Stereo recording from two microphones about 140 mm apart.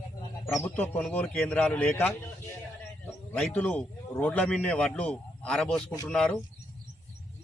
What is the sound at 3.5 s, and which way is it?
A man's voice, 10° left (ahead or behind).